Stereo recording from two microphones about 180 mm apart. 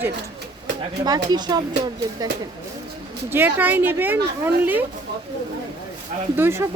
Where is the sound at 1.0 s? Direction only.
20° right (ahead or behind).